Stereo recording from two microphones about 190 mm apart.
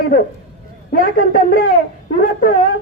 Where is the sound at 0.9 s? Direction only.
50° left (ahead or behind).